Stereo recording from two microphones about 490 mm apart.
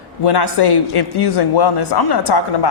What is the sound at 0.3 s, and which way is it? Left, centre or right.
A man's voice, left.